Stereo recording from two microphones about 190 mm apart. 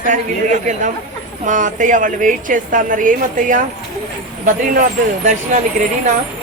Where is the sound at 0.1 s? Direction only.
40° right (ahead or behind).